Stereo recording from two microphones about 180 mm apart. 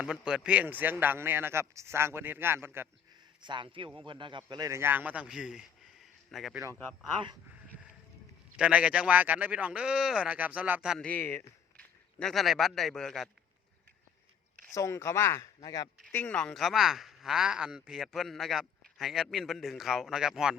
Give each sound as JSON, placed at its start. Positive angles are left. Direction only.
{"t": 0.0, "sound": "speech", "side_deg": -5}
{"t": 3.4, "sound": "speech", "side_deg": -25}
{"t": 8.5, "sound": "speech", "side_deg": -5}
{"t": 11.0, "sound": "a man's voice", "side_deg": 10}
{"t": 14.7, "sound": "speech", "side_deg": 15}
{"t": 16.1, "sound": "speech", "side_deg": 5}